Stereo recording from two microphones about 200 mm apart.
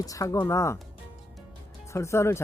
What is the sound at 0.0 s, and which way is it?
Speech, 15° left (ahead or behind).